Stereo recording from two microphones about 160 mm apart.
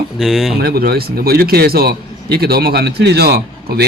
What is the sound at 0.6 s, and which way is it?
A man's voice, 75° right (ahead or behind).